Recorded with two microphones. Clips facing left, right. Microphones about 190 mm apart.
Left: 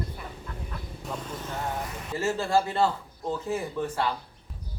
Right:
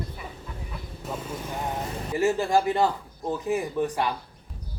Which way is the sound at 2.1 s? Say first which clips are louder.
Right 3 dB; 15° right (ahead or behind).